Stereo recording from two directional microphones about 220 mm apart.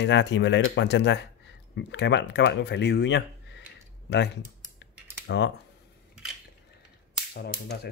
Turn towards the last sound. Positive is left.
turn(degrees=45)  # may be behind; listen again after turning